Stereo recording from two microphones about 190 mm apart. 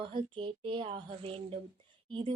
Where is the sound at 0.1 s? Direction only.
25° right (ahead or behind).